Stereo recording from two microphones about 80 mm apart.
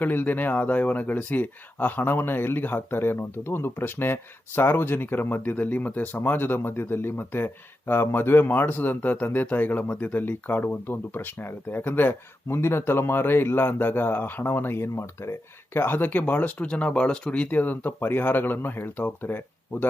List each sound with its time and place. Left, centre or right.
0.0 s speech: left